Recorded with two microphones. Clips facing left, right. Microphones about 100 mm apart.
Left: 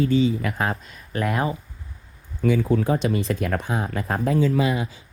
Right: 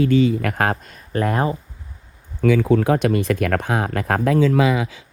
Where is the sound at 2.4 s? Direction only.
85° right.